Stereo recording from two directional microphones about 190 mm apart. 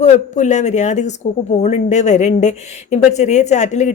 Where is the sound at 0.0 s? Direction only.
35° left (ahead or behind).